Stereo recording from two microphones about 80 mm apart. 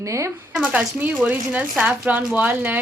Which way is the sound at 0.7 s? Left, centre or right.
Centre.